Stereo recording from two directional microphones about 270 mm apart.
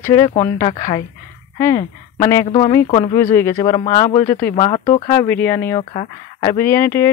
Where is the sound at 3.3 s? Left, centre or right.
Centre.